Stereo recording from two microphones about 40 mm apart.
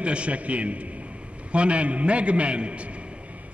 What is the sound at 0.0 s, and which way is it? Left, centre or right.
A man's voice, right.